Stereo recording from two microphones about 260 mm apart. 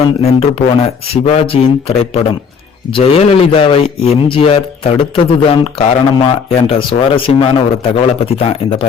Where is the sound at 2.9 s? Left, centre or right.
Left.